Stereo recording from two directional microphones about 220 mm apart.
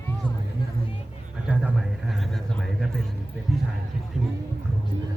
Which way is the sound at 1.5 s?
5° right (ahead or behind).